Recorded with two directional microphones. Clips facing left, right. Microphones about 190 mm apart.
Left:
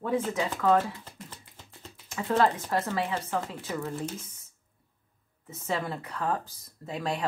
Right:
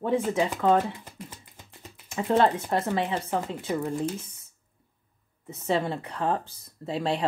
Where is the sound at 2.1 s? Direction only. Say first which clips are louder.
Right 3 dB; 25° right (ahead or behind).